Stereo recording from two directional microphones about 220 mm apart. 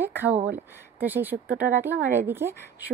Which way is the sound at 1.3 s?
40° right (ahead or behind).